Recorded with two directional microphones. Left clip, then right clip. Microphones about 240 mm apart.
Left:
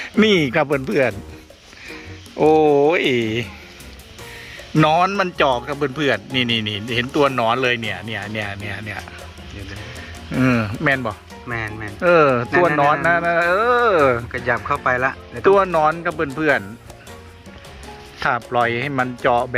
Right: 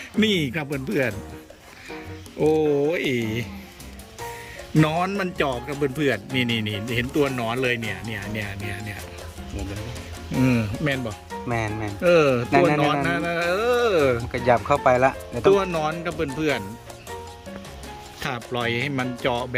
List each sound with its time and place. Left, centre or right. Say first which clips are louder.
0.0 s speech: left 7 dB; centre
2.4 s speech: left 7 dB; centre
4.7 s speech: left 7 dB; centre
10.3 s speech: left 4 dB; centre
11.4 s speech: left 1 dB; right
11.9 s speech: left 4 dB; centre
14.3 s speech: right 1 dB; right
15.4 s speech: left 6 dB; centre
18.2 s speech: left 9 dB; centre